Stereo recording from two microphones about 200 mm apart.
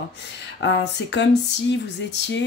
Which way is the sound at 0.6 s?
60° left (ahead or behind).